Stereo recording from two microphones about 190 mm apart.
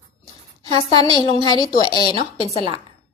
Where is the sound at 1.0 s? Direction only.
25° left (ahead or behind).